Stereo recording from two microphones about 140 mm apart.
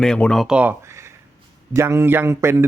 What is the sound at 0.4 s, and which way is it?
A man's voice, 10° right (ahead or behind).